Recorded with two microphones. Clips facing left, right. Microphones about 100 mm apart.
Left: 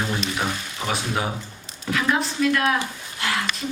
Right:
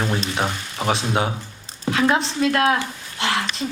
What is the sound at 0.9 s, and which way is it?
Speech, 25° right (ahead or behind).